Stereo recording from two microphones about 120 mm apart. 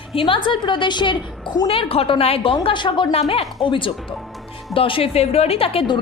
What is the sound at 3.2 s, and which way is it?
A woman's voice, 55° left (ahead or behind).